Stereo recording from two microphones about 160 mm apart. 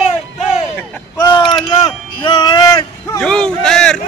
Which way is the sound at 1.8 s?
25° left (ahead or behind).